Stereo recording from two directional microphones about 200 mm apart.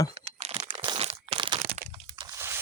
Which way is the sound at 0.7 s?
25° right (ahead or behind).